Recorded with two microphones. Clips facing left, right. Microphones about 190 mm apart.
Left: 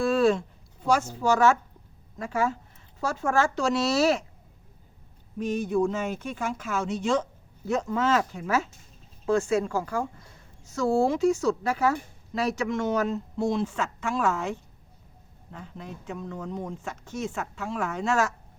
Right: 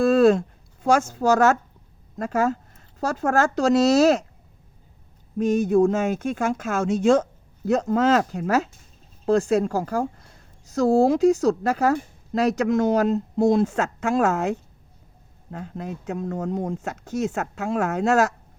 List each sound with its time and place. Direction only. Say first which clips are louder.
0.0 s a woman's voice: right 6 dB; 40° right (ahead or behind)
5.4 s a woman's voice: right 7 dB; 45° right (ahead or behind)
17.3 s speech: right 6 dB; 75° right (ahead or behind)
17.6 s speech: right 7 dB; 45° right (ahead or behind)